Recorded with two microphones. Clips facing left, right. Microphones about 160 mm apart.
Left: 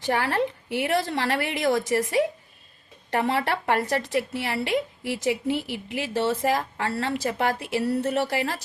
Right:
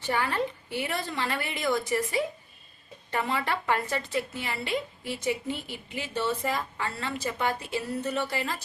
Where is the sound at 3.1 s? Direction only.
75° left (ahead or behind).